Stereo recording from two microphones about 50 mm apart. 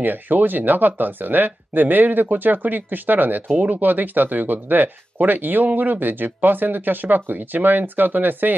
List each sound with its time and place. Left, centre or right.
0.0 s speech: right
3.4 s speech: right
3.7 s speech: right